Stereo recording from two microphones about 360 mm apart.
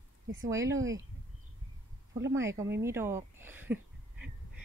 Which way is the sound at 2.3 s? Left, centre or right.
Centre.